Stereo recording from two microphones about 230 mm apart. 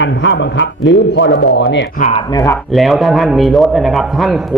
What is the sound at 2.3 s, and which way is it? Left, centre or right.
Speech, centre.